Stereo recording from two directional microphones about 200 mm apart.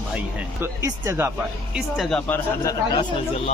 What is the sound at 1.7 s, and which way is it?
Speech, centre (ahead or behind).